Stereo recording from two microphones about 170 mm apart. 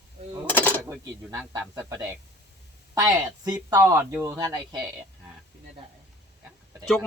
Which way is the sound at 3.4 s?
25° right (ahead or behind).